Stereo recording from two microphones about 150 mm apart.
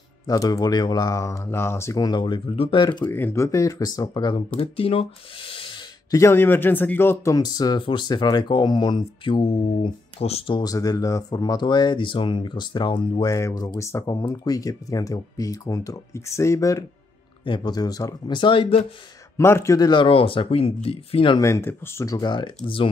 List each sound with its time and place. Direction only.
0.3 s speech: 25° left (ahead or behind)
3.1 s speech: 15° left (ahead or behind); by 4.5 s 30° left (ahead or behind)
4.6 s speech: 40° left (ahead or behind)
6.1 s speech: 15° left (ahead or behind); by 13.3 s 35° left (ahead or behind)
13.3 s speech: 20° left (ahead or behind); by 18.9 s 35° left (ahead or behind)
19.3 s speech: 20° left (ahead or behind); by 21.4 s 35° left (ahead or behind)
21.4 s speech: 20° left (ahead or behind); by 22.8 s 35° left (ahead or behind)